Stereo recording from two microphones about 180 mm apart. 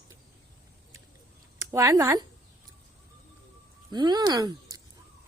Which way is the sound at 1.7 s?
15° right (ahead or behind).